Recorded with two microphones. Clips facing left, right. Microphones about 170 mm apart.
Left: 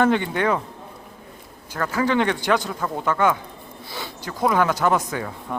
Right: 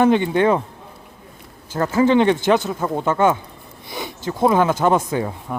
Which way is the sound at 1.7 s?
25° right (ahead or behind).